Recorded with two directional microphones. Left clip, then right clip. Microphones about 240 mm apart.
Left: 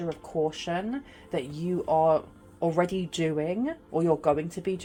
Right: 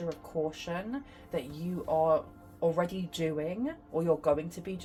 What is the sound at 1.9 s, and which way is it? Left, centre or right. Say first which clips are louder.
Speech: left 3 dB; left.